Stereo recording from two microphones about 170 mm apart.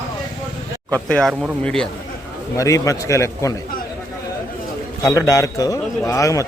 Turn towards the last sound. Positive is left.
turn(degrees=20)  # may be behind; listen again after turning